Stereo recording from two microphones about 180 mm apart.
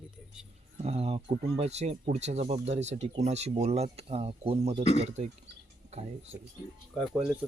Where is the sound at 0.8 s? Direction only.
35° right (ahead or behind).